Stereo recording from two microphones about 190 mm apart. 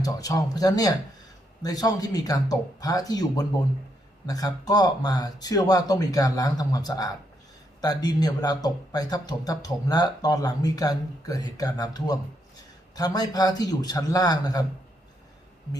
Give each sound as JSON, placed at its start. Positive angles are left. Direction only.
{"t": 0.0, "sound": "speech", "side_deg": 20}